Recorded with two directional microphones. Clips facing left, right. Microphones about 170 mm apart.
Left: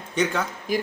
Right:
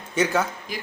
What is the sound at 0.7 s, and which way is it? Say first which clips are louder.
Speech: left 9 dB; 45° left (ahead or behind).